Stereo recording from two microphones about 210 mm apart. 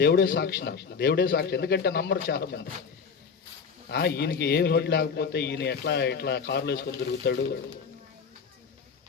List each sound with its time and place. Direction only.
0.0 s a man's voice: 50° left (ahead or behind)
3.8 s a man's voice: 50° left (ahead or behind)